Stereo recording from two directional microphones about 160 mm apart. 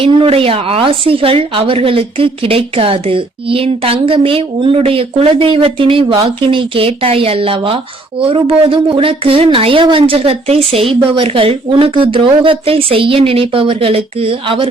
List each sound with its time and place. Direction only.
0.0 s a woman's voice: 35° right (ahead or behind)